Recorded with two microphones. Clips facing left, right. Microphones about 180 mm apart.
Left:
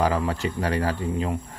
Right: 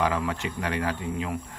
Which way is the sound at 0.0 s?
35° left (ahead or behind).